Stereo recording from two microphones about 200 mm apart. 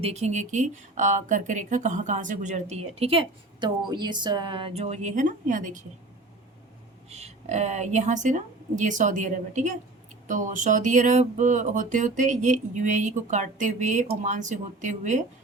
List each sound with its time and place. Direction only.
0.0 s speech: 35° right (ahead or behind)
7.1 s speech: 35° right (ahead or behind)